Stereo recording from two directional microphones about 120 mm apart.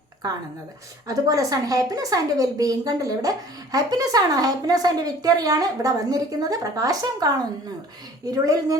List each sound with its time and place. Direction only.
1.0 s a woman's voice: 30° right (ahead or behind)